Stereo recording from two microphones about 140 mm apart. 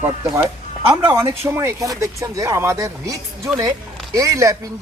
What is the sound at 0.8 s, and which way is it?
Speech, 15° right (ahead or behind).